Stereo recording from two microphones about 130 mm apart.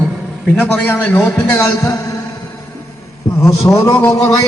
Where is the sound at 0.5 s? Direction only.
10° left (ahead or behind).